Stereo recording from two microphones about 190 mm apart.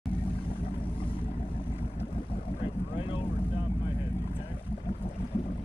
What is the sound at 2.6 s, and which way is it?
Boat, 30° left (ahead or behind).